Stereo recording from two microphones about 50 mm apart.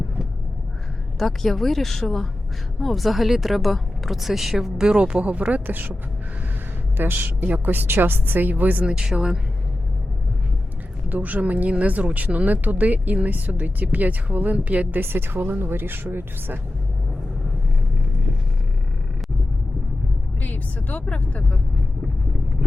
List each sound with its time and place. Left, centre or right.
1.2 s speech: centre; by 6.0 s right
6.9 s speech: right
8.9 s speech: centre
11.1 s speech: right
20.4 s speech: left